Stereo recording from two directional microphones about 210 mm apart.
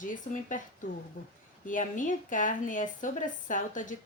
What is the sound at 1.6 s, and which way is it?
A woman's voice, 40° left (ahead or behind).